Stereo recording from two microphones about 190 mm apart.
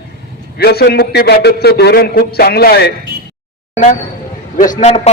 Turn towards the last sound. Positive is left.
turn(degrees=35)  # may be behind; listen again after turning